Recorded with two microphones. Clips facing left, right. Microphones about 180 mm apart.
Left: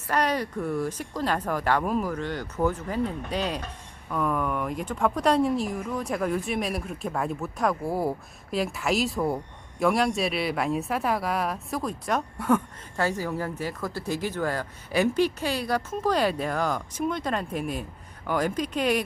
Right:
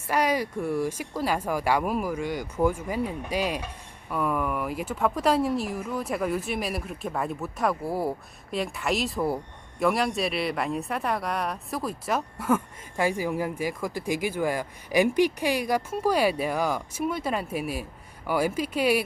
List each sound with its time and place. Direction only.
0.1 s speech: 10° right (ahead or behind)